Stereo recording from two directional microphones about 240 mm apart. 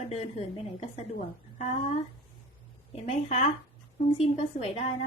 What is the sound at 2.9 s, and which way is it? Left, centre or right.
A woman's voice, left.